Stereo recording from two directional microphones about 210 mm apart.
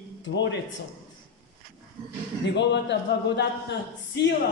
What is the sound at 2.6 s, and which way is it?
A man's voice, 55° left (ahead or behind).